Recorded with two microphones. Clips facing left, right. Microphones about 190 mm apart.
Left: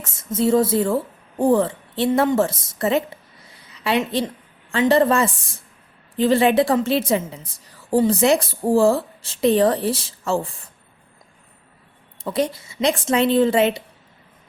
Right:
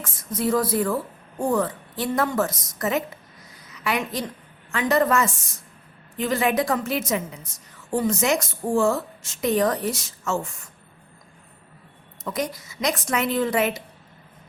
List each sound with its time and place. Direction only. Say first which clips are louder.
0.0 s a woman's voice: left 5 dB; 25° left (ahead or behind)
12.2 s speech: left 6 dB; 30° left (ahead or behind)